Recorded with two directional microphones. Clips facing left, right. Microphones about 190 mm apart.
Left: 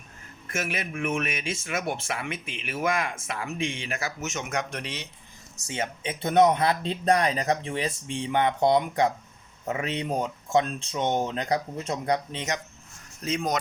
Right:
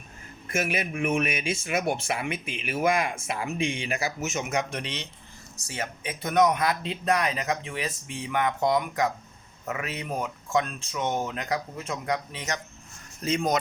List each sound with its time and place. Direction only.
0.5 s speech: 15° right (ahead or behind); by 5.0 s 5° left (ahead or behind)
5.6 s speech: 25° left (ahead or behind)
13.2 s speech: centre (ahead or behind)